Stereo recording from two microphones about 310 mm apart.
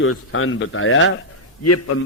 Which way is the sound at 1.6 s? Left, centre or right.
Left.